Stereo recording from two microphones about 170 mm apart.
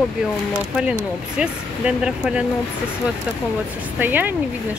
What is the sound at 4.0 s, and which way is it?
Speech, 10° right (ahead or behind).